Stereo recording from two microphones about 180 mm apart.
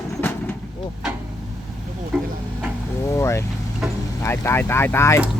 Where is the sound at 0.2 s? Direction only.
10° left (ahead or behind).